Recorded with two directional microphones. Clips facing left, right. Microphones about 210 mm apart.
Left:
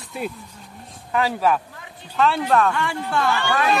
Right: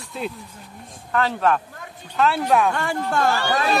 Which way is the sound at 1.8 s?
45° right (ahead or behind).